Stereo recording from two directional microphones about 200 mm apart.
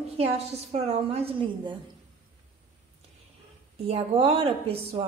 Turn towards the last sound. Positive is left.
turn(degrees=-30)  # may be behind; listen again after turning